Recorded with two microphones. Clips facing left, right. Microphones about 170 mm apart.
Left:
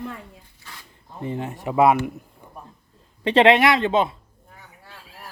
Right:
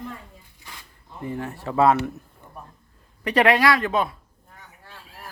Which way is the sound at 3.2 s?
25° left (ahead or behind).